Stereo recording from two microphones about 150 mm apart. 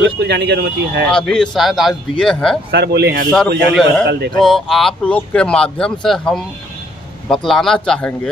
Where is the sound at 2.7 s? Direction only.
90° right.